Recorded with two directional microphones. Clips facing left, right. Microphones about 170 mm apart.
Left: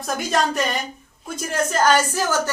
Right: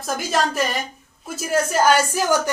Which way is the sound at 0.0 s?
Centre (ahead or behind).